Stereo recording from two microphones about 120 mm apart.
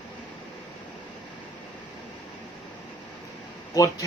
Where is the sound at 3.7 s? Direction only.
30° left (ahead or behind).